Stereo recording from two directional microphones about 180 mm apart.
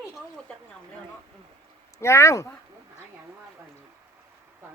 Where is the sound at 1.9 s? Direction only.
15° left (ahead or behind).